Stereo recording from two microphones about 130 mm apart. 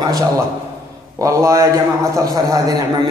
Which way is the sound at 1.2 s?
25° right (ahead or behind).